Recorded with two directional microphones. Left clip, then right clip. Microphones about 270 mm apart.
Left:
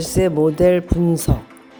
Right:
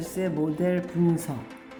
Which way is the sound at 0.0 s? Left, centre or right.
Left.